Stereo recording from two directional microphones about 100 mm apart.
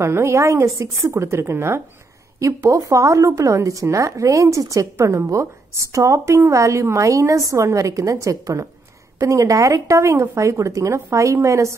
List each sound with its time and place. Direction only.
0.0 s a woman's voice: 30° right (ahead or behind)